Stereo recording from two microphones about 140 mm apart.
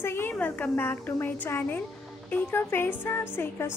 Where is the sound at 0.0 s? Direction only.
15° left (ahead or behind).